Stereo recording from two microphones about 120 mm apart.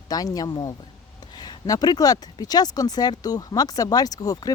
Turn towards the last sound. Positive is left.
turn(degrees=30)  # may be behind; listen again after turning